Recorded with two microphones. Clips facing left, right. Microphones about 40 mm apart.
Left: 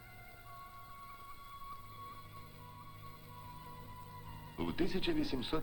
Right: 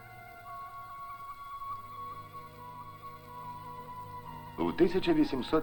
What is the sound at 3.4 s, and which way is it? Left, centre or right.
Music, centre.